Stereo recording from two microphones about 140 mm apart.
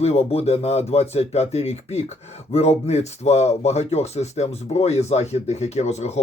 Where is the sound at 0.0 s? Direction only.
50° left (ahead or behind).